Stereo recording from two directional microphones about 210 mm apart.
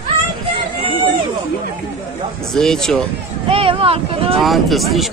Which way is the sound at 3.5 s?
25° right (ahead or behind).